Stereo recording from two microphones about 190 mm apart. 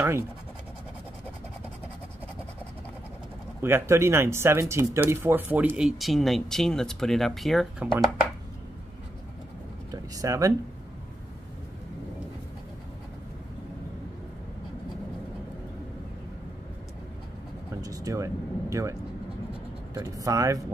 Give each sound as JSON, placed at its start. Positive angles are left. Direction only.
{"t": 3.6, "sound": "speech", "side_deg": -15}
{"t": 9.8, "sound": "a sound", "side_deg": -20}
{"t": 17.8, "sound": "speech", "side_deg": -20}